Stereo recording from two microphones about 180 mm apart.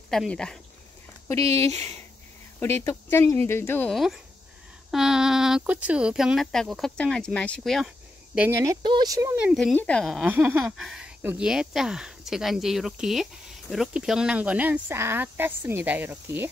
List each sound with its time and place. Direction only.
0.1 s speech: 5° left (ahead or behind)
1.5 s speech: 15° left (ahead or behind)
3.9 s speech: centre (ahead or behind)
8.4 s speech: 15° right (ahead or behind)
9.4 s speech: centre (ahead or behind)